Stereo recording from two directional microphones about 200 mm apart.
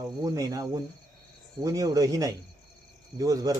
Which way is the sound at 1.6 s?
15° right (ahead or behind).